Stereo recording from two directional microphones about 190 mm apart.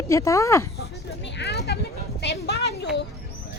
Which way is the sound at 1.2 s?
65° left (ahead or behind).